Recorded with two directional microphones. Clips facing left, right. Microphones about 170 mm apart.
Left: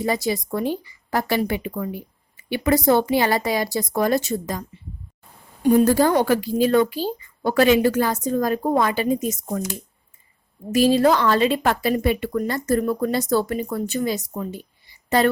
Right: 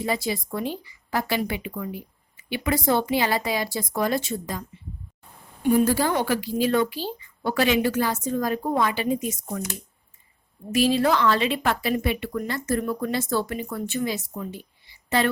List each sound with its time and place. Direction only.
0.0 s a woman's voice: 45° left (ahead or behind)
5.6 s a woman's voice: 45° left (ahead or behind)
10.8 s a woman's voice: 40° left (ahead or behind)